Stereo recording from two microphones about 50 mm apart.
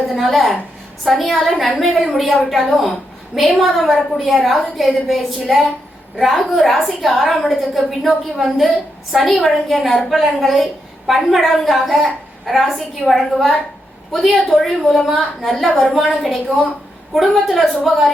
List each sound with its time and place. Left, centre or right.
0.1 s a woman's voice: centre